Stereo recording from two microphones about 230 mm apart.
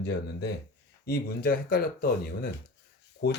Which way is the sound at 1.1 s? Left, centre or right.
Left.